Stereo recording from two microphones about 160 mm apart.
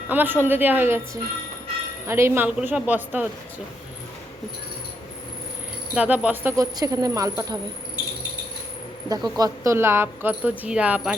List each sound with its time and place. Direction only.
0.1 s a woman's voice: 10° right (ahead or behind)
5.9 s speech: 10° right (ahead or behind)
9.0 s a woman's voice: 25° right (ahead or behind); by 11.1 s 10° right (ahead or behind)